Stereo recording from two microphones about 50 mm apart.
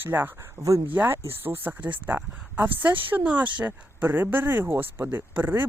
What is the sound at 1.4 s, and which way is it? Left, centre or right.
Speech, right.